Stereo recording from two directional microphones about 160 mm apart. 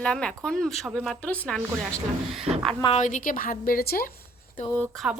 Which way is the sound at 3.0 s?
55° left (ahead or behind).